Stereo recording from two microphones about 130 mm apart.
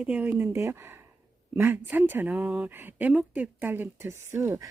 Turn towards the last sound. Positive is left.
turn(degrees=-20)  # may be behind; listen again after turning